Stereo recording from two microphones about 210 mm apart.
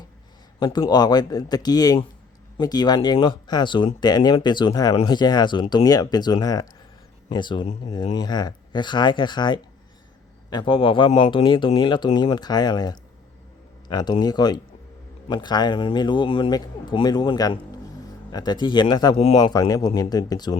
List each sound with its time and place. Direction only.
0.6 s speech: 20° left (ahead or behind)